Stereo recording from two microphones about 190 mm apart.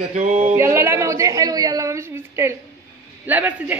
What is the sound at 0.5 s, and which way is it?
A woman's voice, 15° right (ahead or behind).